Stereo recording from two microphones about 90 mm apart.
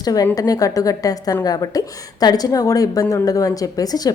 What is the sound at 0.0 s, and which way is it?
A woman's voice, 45° left (ahead or behind).